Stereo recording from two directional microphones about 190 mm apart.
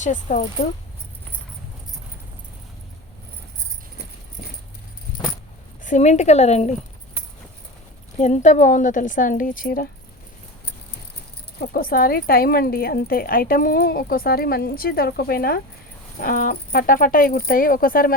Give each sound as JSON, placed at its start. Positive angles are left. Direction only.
{"t": 0.0, "sound": "a woman's voice", "side_deg": 40}
{"t": 5.8, "sound": "a woman's voice", "side_deg": 40}
{"t": 8.2, "sound": "speech", "side_deg": 40}
{"t": 11.6, "sound": "speech", "side_deg": 50}